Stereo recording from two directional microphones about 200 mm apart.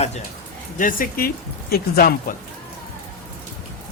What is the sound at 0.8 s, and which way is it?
Speech, 45° left (ahead or behind).